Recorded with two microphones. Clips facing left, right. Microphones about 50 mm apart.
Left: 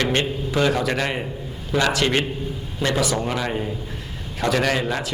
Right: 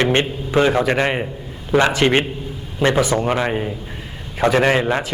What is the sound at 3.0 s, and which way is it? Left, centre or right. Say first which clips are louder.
Speech: right 4 dB; centre.